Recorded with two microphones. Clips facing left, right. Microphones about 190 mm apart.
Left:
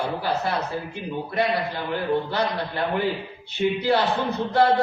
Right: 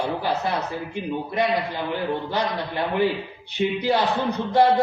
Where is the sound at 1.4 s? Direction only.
15° right (ahead or behind).